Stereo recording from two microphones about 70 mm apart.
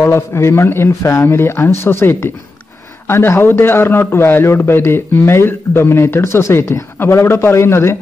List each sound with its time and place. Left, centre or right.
0.0 s a man's voice: left